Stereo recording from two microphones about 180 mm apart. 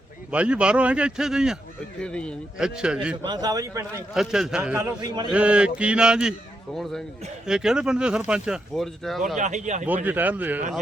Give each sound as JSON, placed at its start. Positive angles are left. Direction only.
{"t": 0.3, "sound": "a man's voice", "side_deg": -5}
{"t": 3.2, "sound": "a man's voice", "side_deg": -20}
{"t": 4.1, "sound": "a man's voice", "side_deg": -5}
{"t": 4.8, "sound": "a man's voice", "side_deg": -25}
{"t": 5.3, "sound": "mantra", "side_deg": -5}
{"t": 7.4, "sound": "a man's voice", "side_deg": -5}
{"t": 9.4, "sound": "speech", "side_deg": -40}
{"t": 9.8, "sound": "mantra", "side_deg": -10}